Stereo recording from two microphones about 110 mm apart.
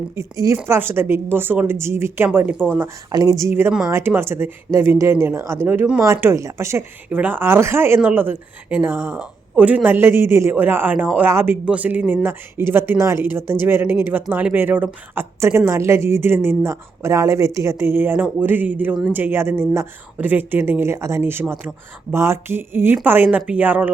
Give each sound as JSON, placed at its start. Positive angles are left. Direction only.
{"t": 0.2, "sound": "speech", "side_deg": -30}
{"t": 3.1, "sound": "speech", "side_deg": -30}
{"t": 7.1, "sound": "speech", "side_deg": -15}